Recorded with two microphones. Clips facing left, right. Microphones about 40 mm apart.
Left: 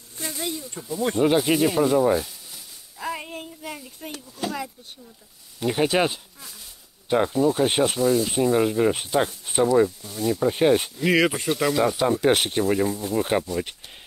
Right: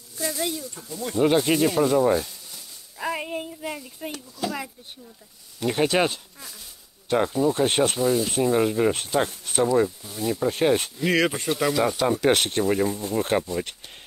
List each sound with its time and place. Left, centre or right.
0.2 s speech: left
0.7 s speech: centre
1.2 s speech: centre
3.0 s speech: centre
4.4 s speech: left
5.6 s speech: centre